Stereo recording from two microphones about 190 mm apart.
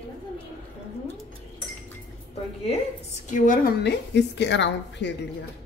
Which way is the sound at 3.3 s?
45° left (ahead or behind).